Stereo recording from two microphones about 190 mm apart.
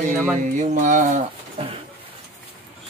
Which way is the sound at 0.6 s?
40° right (ahead or behind).